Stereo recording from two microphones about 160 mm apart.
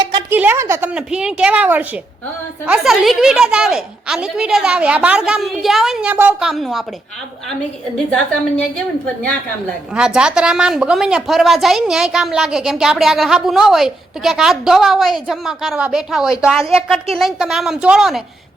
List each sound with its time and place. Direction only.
0.0 s a sound: 30° right (ahead or behind)
0.3 s a woman's voice: 10° right (ahead or behind)
7.9 s a woman's voice: 5° left (ahead or behind)
9.9 s a woman's voice: 5° right (ahead or behind)